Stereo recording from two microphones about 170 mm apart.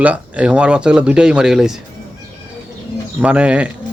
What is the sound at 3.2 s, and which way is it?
Speech, 5° right (ahead or behind).